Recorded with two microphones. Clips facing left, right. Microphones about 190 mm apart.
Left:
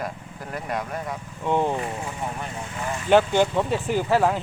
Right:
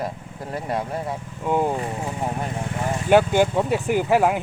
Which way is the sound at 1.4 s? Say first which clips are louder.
Right 1 dB; 10° right (ahead or behind).